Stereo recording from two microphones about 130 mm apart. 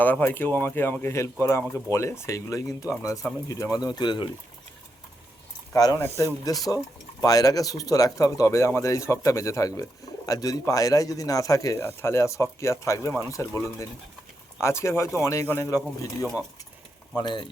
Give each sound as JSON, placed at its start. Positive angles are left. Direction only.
{"t": 0.0, "sound": "speech", "side_deg": 15}
{"t": 5.7, "sound": "speech", "side_deg": 30}
{"t": 17.2, "sound": "speech", "side_deg": 35}